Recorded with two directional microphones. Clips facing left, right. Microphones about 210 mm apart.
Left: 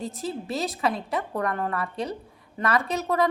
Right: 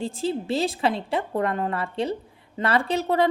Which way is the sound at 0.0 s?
30° right (ahead or behind).